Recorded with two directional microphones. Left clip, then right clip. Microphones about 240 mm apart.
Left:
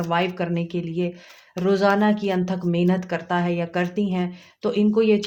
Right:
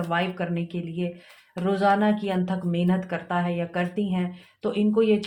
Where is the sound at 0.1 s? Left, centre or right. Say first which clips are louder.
Left 4 dB; left.